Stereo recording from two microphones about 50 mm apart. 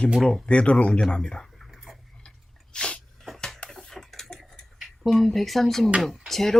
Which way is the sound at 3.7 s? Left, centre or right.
Centre.